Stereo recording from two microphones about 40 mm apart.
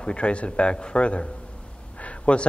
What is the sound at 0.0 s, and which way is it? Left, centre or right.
A man's voice, left.